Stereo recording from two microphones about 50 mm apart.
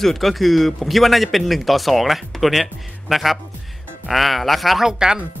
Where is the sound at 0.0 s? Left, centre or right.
Centre.